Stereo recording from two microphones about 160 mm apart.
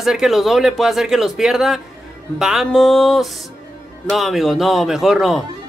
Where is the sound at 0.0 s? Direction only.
5° right (ahead or behind).